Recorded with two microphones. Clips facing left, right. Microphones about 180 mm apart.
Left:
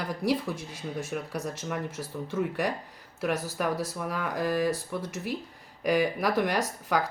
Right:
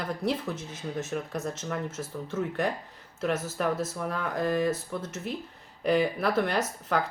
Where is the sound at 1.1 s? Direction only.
10° left (ahead or behind).